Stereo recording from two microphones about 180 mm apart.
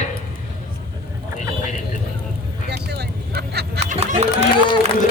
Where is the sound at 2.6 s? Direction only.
65° right (ahead or behind).